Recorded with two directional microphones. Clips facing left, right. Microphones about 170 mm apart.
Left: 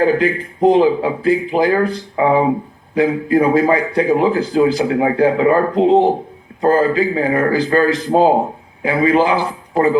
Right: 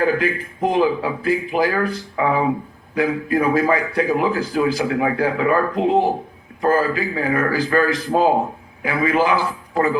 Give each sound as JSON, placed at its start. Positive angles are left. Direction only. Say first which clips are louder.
{"t": 0.0, "sound": "speech", "louder": "left 4 dB", "side_deg": 25}